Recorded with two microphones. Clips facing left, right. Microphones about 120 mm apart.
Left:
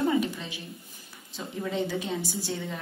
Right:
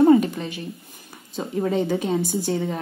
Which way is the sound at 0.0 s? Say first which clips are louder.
Right 11 dB; 50° right (ahead or behind).